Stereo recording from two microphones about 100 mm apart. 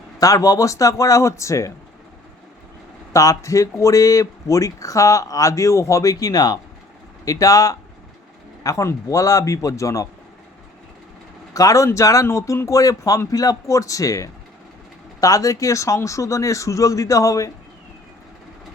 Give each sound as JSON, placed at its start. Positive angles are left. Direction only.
{"t": 0.2, "sound": "speech", "side_deg": 35}
{"t": 3.1, "sound": "speech", "side_deg": 30}
{"t": 11.5, "sound": "speech", "side_deg": 35}